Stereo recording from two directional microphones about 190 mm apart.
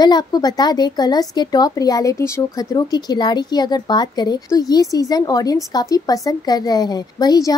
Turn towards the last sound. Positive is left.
turn(degrees=20)  # may be behind; listen again after turning